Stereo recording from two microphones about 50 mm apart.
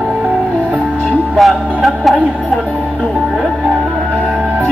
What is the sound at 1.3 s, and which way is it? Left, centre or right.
Music, centre.